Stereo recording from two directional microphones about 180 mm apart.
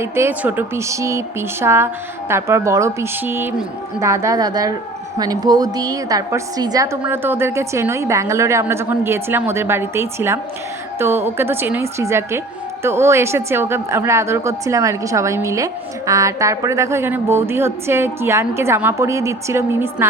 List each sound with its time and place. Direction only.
0.0 s a woman's voice: 15° right (ahead or behind)